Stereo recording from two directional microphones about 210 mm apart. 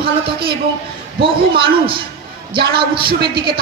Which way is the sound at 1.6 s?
25° right (ahead or behind).